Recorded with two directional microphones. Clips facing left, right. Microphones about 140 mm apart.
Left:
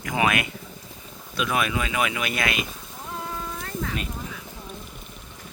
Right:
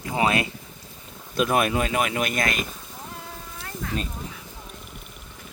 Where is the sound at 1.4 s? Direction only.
45° right (ahead or behind).